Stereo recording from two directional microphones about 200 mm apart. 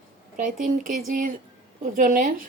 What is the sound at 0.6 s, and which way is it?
A woman's voice, 40° right (ahead or behind).